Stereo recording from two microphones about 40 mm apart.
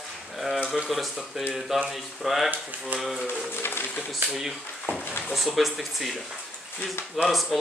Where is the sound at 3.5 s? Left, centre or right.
Left.